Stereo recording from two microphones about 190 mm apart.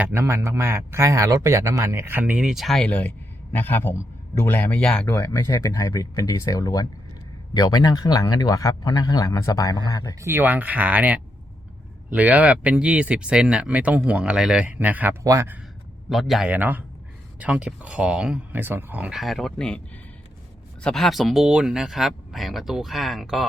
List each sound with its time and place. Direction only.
0.0 s speech: 10° right (ahead or behind); by 5.1 s 5° left (ahead or behind)
5.1 s a man's voice: 15° left (ahead or behind)
10.2 s speech: 10° right (ahead or behind)
16.0 s speech: centre (ahead or behind)
20.8 s speech: centre (ahead or behind)